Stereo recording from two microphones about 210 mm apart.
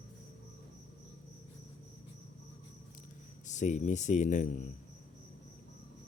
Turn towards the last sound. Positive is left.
turn(degrees=35)  # may be behind; listen again after turning